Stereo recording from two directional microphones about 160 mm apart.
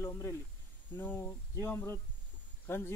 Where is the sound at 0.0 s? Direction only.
15° left (ahead or behind).